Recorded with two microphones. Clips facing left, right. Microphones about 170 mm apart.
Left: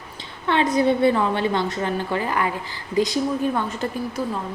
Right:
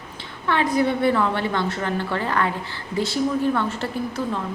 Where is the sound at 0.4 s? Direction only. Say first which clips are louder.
Left 2 dB; 25° left (ahead or behind).